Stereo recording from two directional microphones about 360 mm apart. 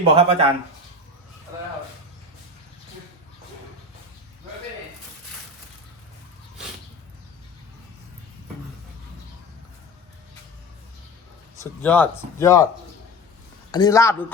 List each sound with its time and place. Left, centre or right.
0.1 s speech: centre
11.6 s speech: centre
13.7 s speech: centre